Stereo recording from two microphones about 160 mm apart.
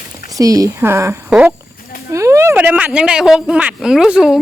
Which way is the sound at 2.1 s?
20° right (ahead or behind).